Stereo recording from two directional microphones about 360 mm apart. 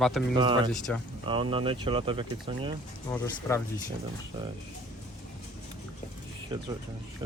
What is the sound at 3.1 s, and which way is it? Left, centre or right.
Speech, centre.